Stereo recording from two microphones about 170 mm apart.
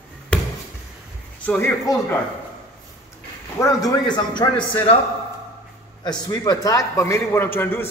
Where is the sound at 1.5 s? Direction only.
10° left (ahead or behind).